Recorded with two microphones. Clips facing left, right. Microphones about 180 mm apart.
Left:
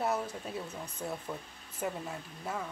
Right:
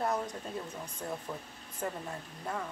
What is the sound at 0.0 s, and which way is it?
Speech, 5° left (ahead or behind).